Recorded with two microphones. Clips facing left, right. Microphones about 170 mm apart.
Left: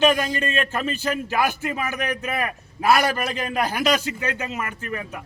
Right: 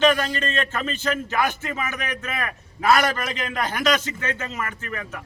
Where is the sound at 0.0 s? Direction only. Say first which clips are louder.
Even; 15° left (ahead or behind).